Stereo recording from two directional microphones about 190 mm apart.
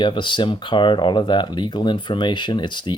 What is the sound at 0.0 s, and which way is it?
Speech, 25° left (ahead or behind).